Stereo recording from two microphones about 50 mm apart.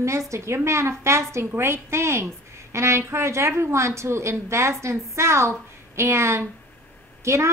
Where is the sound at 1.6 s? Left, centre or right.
Right.